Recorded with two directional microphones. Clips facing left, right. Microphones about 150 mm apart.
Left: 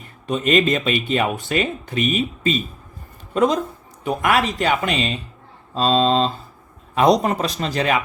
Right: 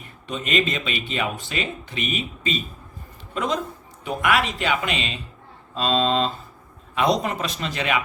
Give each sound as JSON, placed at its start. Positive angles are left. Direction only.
{"t": 0.3, "sound": "speech", "side_deg": 45}